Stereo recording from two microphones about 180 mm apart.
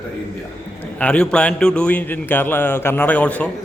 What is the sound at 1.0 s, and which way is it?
A man's voice, 5° left (ahead or behind).